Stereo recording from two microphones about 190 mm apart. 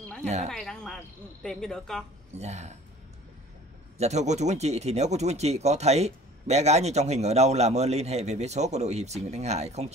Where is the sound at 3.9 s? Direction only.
35° right (ahead or behind).